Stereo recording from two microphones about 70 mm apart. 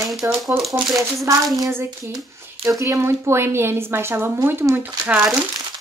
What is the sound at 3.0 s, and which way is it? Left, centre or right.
A woman's voice, right.